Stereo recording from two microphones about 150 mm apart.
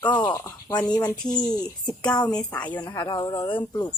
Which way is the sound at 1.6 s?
25° left (ahead or behind).